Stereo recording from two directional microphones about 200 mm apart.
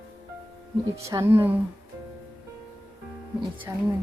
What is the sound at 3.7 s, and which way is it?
Speech, 15° right (ahead or behind).